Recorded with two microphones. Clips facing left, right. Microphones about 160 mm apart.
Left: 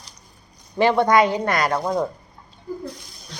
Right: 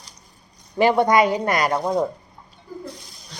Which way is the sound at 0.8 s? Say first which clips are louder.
Even; 15° right (ahead or behind).